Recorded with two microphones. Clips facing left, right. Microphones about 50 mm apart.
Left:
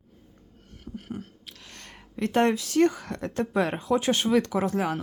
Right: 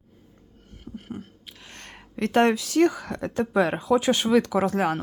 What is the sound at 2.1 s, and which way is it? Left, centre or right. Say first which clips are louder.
Speech: right 3 dB; right.